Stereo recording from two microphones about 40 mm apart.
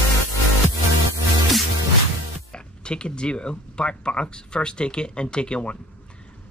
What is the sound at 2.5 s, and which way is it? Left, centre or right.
Speech, left.